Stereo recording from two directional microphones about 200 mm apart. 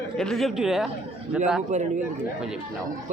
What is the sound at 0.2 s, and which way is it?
Speech, centre (ahead or behind).